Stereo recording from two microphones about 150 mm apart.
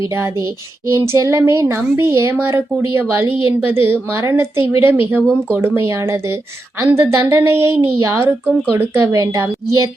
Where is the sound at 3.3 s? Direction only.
35° left (ahead or behind).